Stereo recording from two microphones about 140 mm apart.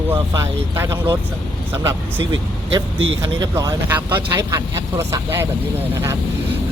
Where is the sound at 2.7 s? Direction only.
25° right (ahead or behind).